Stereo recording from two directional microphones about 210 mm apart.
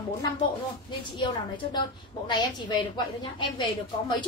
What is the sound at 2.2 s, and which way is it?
A woman's voice, 20° left (ahead or behind).